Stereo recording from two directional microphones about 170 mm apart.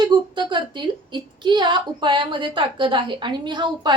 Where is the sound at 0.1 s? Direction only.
30° right (ahead or behind).